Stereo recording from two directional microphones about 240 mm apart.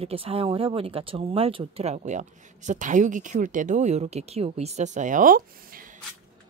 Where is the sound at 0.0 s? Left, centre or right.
Right.